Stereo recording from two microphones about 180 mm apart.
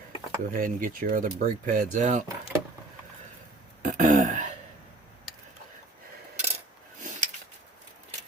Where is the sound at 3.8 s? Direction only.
45° right (ahead or behind).